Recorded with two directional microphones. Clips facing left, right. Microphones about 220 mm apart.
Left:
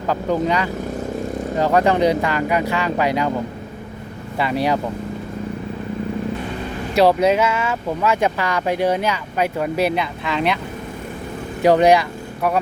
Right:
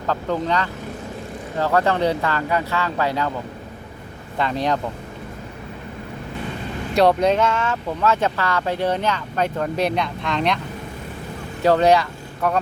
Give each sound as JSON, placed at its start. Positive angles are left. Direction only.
{"t": 0.1, "sound": "speech", "side_deg": 10}
{"t": 4.4, "sound": "speech", "side_deg": 10}
{"t": 6.9, "sound": "speech", "side_deg": 5}
{"t": 11.6, "sound": "speech", "side_deg": 15}